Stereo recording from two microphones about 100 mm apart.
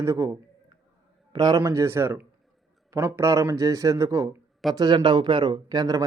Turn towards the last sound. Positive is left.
turn(degrees=-40)  # may be behind; listen again after turning